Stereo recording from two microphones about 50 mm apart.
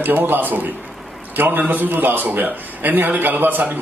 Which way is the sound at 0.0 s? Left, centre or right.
Right.